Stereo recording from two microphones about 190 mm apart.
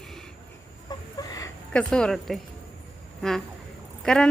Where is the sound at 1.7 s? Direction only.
5° left (ahead or behind).